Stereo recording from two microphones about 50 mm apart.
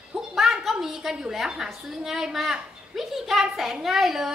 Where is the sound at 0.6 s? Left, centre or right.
Centre.